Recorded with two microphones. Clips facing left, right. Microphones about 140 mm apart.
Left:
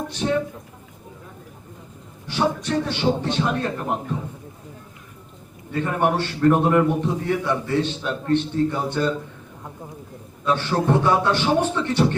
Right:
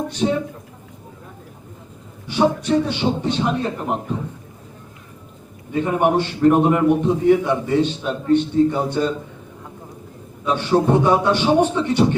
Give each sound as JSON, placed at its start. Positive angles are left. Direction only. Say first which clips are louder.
{"t": 0.2, "sound": "speech", "louder": "right 3 dB", "side_deg": -20}
{"t": 2.2, "sound": "a man's voice", "louder": "right 5 dB", "side_deg": -15}
{"t": 5.7, "sound": "a man's voice", "louder": "right 4 dB", "side_deg": -15}
{"t": 10.4, "sound": "a man's voice", "louder": "right 4 dB", "side_deg": -15}